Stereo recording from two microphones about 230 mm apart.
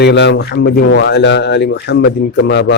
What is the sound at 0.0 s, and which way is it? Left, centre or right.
A man's voice, left.